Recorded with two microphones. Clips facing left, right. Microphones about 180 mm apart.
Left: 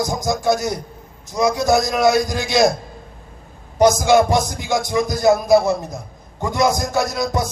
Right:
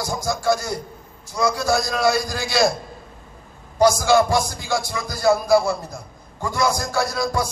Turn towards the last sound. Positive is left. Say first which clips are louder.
# left 2 dB
turn(degrees=20)  # may be behind; listen again after turning